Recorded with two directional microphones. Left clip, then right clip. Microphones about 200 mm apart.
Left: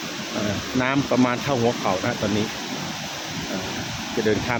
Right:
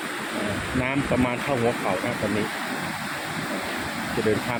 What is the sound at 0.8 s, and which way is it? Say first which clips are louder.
Speech: left 4 dB; 25° left (ahead or behind).